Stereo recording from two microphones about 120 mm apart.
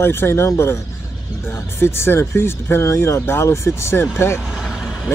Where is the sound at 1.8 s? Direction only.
20° left (ahead or behind).